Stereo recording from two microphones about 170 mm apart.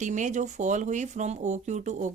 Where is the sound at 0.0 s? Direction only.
45° right (ahead or behind).